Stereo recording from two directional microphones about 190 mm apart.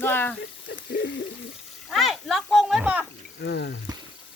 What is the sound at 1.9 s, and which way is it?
Speech, centre (ahead or behind).